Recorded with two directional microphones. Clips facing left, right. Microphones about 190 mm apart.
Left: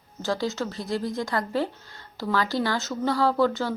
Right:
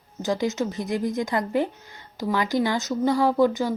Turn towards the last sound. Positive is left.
turn(degrees=-15)  # may be behind; listen again after turning